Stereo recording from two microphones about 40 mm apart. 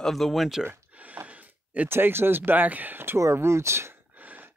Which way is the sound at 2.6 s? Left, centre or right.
Right.